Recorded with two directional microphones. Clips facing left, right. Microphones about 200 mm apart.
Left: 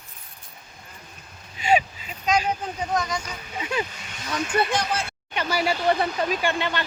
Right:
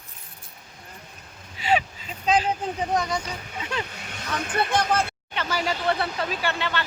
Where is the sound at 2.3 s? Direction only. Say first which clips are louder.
Right 1 dB; 30° right (ahead or behind).